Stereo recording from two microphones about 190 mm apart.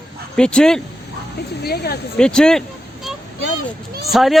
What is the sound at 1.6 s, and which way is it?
Speech, 55° left (ahead or behind).